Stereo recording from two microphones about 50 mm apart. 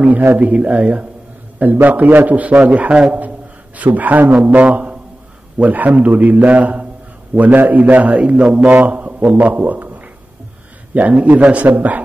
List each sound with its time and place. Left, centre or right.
0.0 s a man's voice: right
0.5 s speech: right
1.6 s a man's voice: right